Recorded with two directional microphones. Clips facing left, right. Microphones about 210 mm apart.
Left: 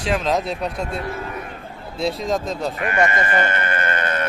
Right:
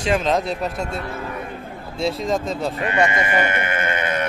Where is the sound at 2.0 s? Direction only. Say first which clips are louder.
Even; centre (ahead or behind).